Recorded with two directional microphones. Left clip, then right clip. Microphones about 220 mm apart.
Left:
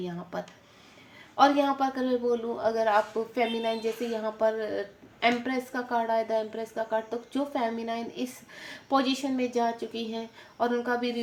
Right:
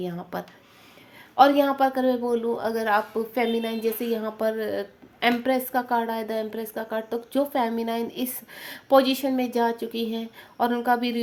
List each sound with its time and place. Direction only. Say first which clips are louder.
0.0 s a woman's voice: right 3 dB; 50° right (ahead or behind)